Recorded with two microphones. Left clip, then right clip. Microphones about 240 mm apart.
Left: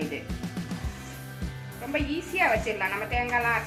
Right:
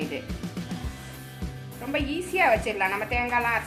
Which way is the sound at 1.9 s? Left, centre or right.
Right.